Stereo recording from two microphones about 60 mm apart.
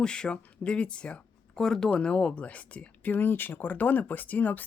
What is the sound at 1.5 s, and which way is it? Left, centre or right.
Speech, centre.